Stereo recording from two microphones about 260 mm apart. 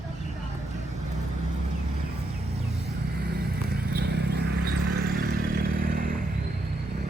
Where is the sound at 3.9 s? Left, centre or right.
Right.